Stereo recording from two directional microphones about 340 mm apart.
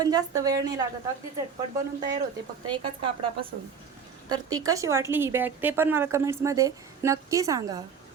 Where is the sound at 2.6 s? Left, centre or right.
Centre.